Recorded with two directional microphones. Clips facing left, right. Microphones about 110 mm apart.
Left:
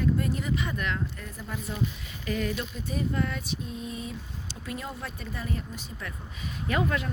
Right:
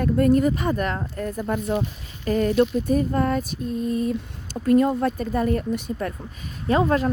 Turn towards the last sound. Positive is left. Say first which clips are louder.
# right 8 dB
turn(degrees=-35)  # may be behind; listen again after turning